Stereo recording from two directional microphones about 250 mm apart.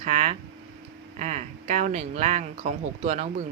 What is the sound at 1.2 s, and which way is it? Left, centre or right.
A woman's voice, right.